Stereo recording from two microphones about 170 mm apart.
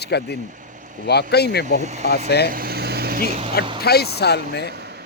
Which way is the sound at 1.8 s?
45° right (ahead or behind).